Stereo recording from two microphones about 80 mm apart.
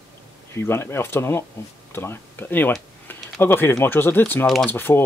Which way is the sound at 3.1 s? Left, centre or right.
Left.